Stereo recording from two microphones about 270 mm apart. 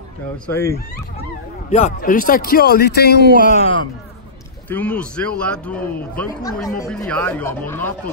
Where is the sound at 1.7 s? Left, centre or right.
Left.